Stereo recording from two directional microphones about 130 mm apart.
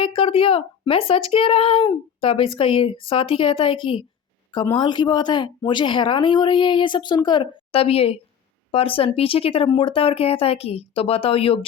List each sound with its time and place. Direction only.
0.0 s speech: 45° left (ahead or behind)
7.8 s speech: 50° left (ahead or behind)